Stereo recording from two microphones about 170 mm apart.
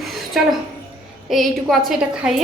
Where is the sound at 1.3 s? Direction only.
Centre (ahead or behind).